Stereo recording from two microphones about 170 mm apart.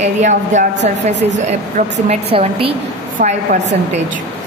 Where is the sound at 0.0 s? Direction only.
45° right (ahead or behind).